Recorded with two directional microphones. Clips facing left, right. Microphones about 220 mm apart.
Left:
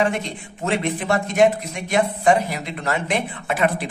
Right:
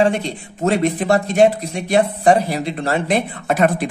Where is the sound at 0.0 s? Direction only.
35° right (ahead or behind).